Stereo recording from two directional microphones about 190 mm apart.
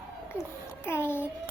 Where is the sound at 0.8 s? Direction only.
10° left (ahead or behind).